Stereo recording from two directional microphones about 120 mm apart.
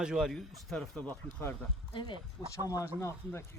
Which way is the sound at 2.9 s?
20° left (ahead or behind).